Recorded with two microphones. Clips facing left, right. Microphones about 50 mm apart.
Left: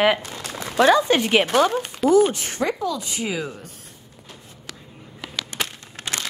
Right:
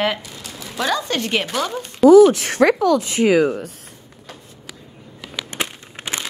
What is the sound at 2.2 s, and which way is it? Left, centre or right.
Speech, right.